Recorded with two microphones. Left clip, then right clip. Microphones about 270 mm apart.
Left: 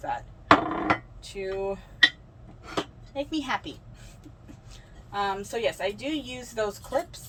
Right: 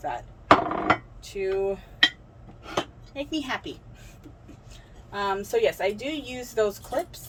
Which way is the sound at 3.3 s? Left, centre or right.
Centre.